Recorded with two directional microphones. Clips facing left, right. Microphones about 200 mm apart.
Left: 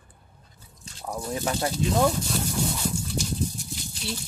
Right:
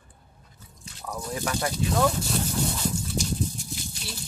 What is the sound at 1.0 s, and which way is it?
Speech, 20° left (ahead or behind).